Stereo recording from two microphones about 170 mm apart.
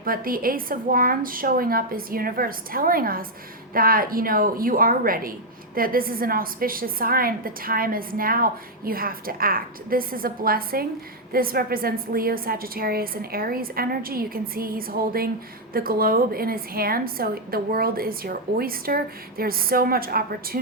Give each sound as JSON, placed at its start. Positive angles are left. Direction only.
{"t": 0.0, "sound": "a woman's voice", "side_deg": -55}